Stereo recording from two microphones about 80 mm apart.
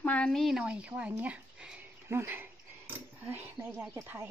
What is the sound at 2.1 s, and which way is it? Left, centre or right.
Dog, right.